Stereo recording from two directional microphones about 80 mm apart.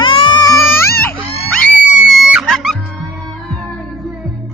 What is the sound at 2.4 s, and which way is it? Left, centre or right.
Music, centre.